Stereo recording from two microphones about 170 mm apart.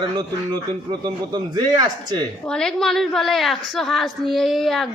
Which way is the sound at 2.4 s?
5° left (ahead or behind).